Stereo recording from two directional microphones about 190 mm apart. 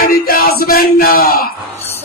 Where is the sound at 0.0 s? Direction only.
50° left (ahead or behind).